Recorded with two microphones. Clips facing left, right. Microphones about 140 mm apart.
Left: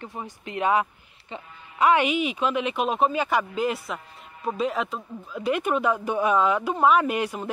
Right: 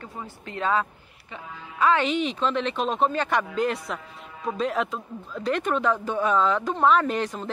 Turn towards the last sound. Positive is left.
turn(degrees=10)  # may be behind; listen again after turning